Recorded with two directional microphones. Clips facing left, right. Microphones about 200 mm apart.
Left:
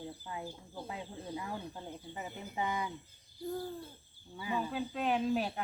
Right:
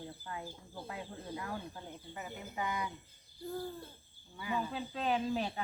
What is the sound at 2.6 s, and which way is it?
Speech, 30° left (ahead or behind).